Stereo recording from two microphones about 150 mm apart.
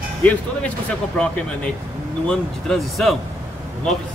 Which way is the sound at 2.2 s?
5° left (ahead or behind).